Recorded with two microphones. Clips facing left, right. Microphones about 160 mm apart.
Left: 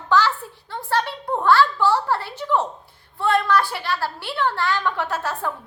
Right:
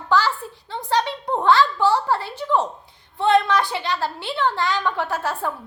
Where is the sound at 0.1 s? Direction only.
15° right (ahead or behind).